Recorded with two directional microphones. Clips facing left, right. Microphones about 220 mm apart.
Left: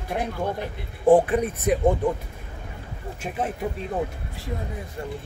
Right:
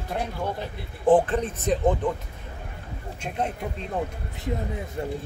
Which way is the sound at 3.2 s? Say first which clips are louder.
Left 1 dB; 5° left (ahead or behind).